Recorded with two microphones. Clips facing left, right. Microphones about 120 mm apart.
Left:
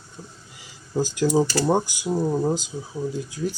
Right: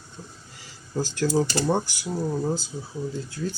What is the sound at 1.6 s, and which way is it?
Speech, 15° left (ahead or behind).